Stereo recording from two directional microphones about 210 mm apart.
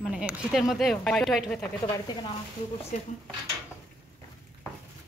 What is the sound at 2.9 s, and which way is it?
Speech, 35° left (ahead or behind).